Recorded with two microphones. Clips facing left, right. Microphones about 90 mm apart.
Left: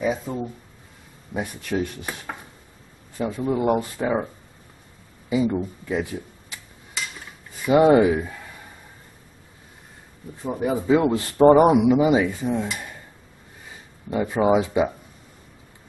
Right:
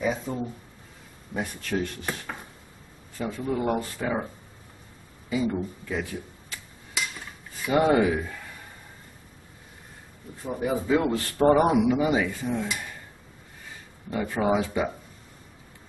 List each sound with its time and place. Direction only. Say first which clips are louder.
0.0 s speech: left 3 dB; 5° left (ahead or behind)
3.2 s speech: left 5 dB; 15° left (ahead or behind)
5.3 s speech: left 5 dB; 15° left (ahead or behind)
7.6 s speech: left 6 dB; 15° left (ahead or behind)
10.4 s a man's voice: left 3 dB; 15° left (ahead or behind)
12.6 s speech: left 2 dB; 5° left (ahead or behind)
14.1 s speech: left 5 dB; 15° left (ahead or behind)